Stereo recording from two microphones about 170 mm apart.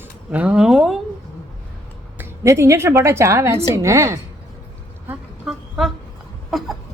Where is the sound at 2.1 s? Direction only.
15° right (ahead or behind).